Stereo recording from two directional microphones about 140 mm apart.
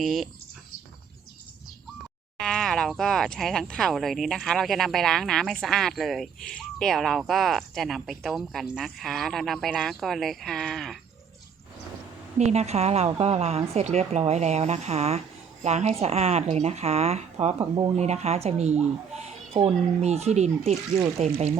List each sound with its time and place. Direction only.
0.0 s speech: centre (ahead or behind)
2.4 s speech: 5° left (ahead or behind)
12.4 s speech: 55° right (ahead or behind)
17.6 s speech: 30° right (ahead or behind)
17.9 s speech: 50° right (ahead or behind)